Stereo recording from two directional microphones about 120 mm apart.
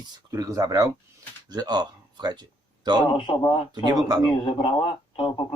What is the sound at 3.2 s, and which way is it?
Speech, 45° left (ahead or behind).